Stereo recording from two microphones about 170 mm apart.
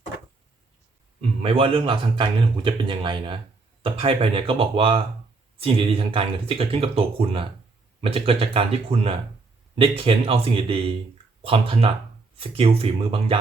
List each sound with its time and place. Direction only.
1.2 s a man's voice: 35° right (ahead or behind)